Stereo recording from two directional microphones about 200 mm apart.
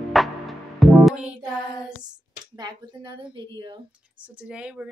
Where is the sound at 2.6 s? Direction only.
20° right (ahead or behind).